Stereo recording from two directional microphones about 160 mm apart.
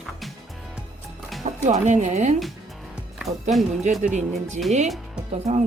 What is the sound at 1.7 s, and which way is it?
Speech, 50° right (ahead or behind).